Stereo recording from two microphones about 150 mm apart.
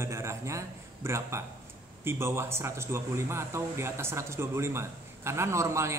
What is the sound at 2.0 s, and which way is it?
A man's voice, 20° right (ahead or behind).